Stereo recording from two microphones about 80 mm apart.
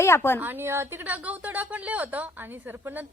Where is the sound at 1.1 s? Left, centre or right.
Centre.